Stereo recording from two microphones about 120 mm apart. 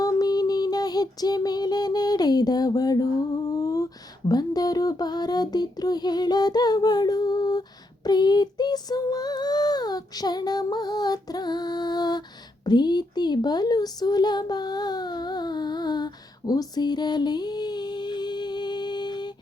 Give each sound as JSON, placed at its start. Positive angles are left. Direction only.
{"t": 0.0, "sound": "child singing", "side_deg": 30}
{"t": 8.0, "sound": "female singing", "side_deg": 35}
{"t": 12.6, "sound": "a sound", "side_deg": 35}